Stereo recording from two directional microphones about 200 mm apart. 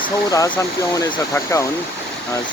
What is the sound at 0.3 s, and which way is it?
Speech, 10° left (ahead or behind).